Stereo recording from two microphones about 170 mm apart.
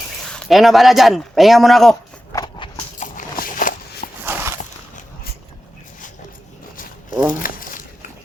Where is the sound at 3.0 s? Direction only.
50° left (ahead or behind).